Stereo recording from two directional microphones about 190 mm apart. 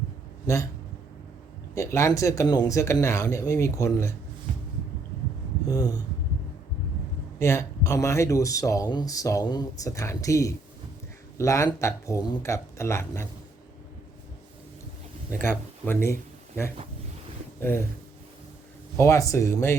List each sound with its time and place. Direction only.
0.4 s speech: 15° left (ahead or behind)
1.7 s speech: 15° left (ahead or behind)
7.3 s speech: 15° left (ahead or behind)
15.3 s speech: 10° left (ahead or behind)
17.6 s speech: 10° left (ahead or behind)
18.9 s speech: 15° left (ahead or behind)